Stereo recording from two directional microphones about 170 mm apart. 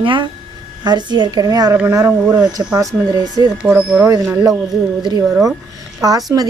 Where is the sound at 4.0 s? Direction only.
20° right (ahead or behind).